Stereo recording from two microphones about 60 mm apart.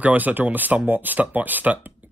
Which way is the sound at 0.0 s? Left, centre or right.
Right.